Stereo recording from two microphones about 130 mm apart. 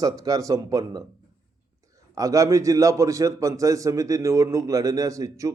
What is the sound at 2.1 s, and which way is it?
A man's voice, 25° right (ahead or behind).